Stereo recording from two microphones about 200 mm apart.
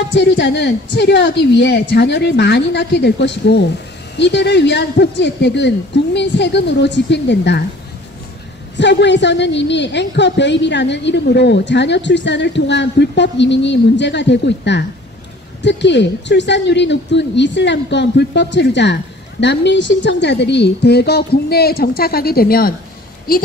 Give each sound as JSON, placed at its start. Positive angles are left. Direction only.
{"t": 0.1, "sound": "a woman's voice", "side_deg": 60}
{"t": 8.7, "sound": "a woman's voice", "side_deg": 60}